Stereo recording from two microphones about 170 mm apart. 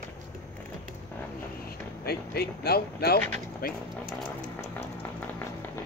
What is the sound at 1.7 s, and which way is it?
Speech, 65° left (ahead or behind).